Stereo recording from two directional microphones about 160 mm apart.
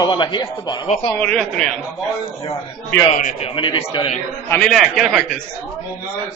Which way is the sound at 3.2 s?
45° left (ahead or behind).